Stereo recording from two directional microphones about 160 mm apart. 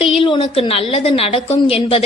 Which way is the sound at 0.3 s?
35° left (ahead or behind).